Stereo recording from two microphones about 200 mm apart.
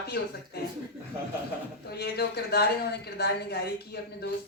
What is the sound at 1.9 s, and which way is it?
A woman's voice, 55° left (ahead or behind).